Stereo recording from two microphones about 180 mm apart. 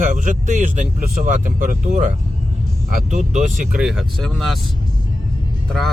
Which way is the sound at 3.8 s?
5° right (ahead or behind).